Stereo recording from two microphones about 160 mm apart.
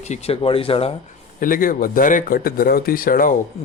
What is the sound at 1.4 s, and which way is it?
Speech, 60° left (ahead or behind).